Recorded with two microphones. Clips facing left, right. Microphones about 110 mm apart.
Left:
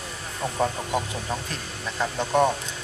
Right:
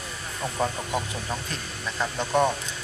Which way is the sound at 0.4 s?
20° left (ahead or behind).